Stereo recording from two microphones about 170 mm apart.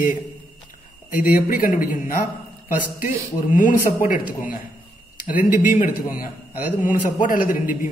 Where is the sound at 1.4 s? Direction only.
55° left (ahead or behind).